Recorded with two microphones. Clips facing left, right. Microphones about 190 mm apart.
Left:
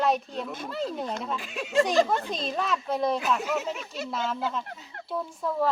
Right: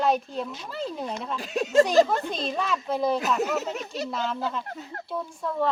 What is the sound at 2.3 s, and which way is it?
Speech, centre (ahead or behind).